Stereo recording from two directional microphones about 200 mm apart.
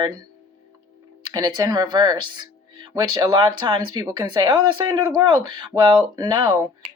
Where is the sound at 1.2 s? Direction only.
20° right (ahead or behind).